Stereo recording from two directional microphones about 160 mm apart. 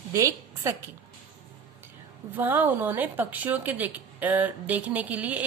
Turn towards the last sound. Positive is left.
turn(degrees=-10)  # may be behind; listen again after turning